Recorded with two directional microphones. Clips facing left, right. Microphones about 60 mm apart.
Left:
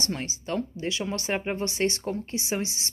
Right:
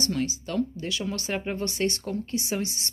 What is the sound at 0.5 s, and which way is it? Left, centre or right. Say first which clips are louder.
Speech: right 1 dB; left.